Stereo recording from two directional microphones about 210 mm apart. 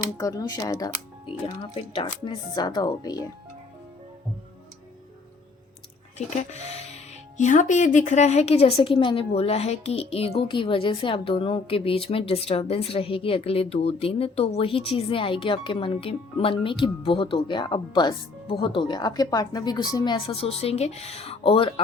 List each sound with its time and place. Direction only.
0.0 s speech: 15° left (ahead or behind)
6.1 s speech: 30° left (ahead or behind)